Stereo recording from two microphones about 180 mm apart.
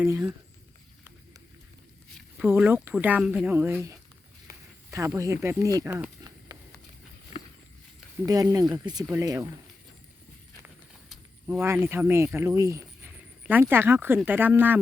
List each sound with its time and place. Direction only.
0.0 s a woman's voice: 15° right (ahead or behind)
2.4 s a woman's voice: 10° right (ahead or behind)
4.5 s a sound: 55° right (ahead or behind)
4.9 s a woman's voice: 15° right (ahead or behind)
6.5 s a sound: 20° right (ahead or behind)
8.3 s speech: 20° right (ahead or behind)
11.5 s a woman's voice: 15° right (ahead or behind)